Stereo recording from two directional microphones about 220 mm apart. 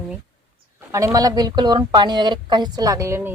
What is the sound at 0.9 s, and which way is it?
Speech, 15° right (ahead or behind).